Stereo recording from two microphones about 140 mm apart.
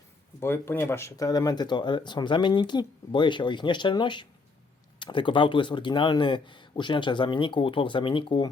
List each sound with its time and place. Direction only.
0.3 s speech: 15° left (ahead or behind); by 8.4 s 35° left (ahead or behind)